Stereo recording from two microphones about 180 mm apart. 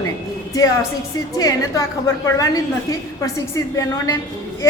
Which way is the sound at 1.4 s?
20° left (ahead or behind).